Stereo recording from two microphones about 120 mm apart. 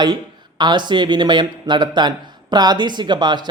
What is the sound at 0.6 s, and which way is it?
Speech, 40° right (ahead or behind).